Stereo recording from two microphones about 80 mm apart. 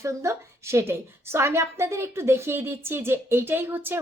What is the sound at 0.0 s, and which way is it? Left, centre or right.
A woman's voice, right.